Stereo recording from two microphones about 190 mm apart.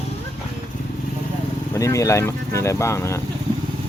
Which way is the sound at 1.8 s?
15° left (ahead or behind).